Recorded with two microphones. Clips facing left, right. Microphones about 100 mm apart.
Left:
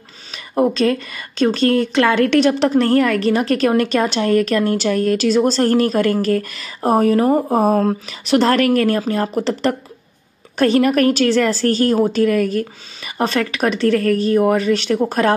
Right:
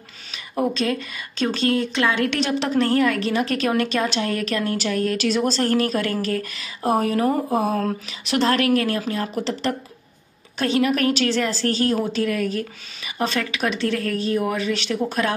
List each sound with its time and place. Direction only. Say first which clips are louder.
0.6 s a woman's voice: left 6 dB; 45° left (ahead or behind)